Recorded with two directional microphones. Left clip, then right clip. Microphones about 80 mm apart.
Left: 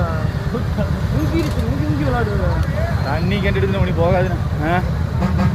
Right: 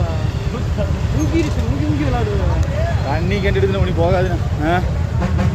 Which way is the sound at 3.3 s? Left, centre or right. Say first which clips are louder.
Right 4 dB; right.